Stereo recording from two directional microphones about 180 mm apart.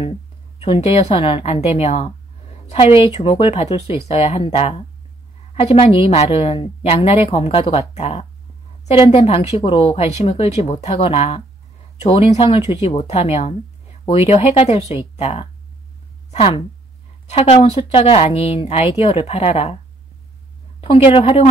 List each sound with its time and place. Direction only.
0.6 s a woman's voice: 35° left (ahead or behind)
20.8 s a woman's voice: 30° left (ahead or behind)